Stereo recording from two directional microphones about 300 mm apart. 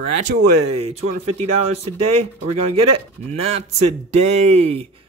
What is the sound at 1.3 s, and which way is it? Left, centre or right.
Speech, centre.